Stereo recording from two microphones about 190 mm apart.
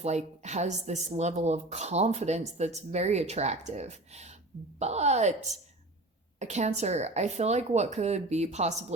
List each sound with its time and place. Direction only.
0.0 s speech: 35° right (ahead or behind)
6.4 s speech: 35° right (ahead or behind)